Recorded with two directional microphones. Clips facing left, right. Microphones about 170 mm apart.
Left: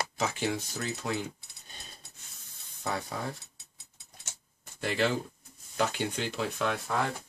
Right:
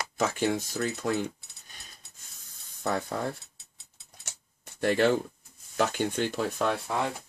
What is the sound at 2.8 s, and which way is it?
Speech, 55° right (ahead or behind).